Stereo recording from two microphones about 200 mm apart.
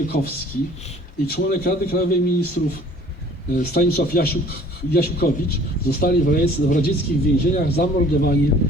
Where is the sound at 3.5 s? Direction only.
50° left (ahead or behind).